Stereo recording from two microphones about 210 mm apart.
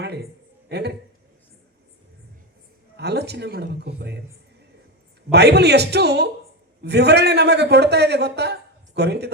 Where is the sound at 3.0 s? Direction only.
50° right (ahead or behind).